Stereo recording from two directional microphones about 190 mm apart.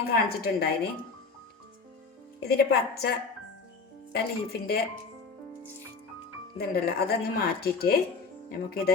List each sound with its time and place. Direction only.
0.0 s speech: 55° left (ahead or behind)
2.4 s speech: 55° left (ahead or behind)
6.6 s speech: 55° left (ahead or behind)